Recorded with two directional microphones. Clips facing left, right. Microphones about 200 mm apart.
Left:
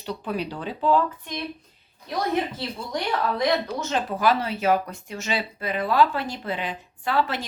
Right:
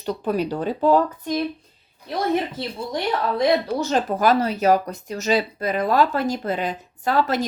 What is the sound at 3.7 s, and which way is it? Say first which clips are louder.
Speech: right 5 dB; 40° right (ahead or behind).